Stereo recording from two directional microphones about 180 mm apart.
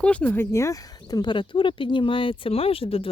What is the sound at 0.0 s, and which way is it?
Speech, 5° left (ahead or behind).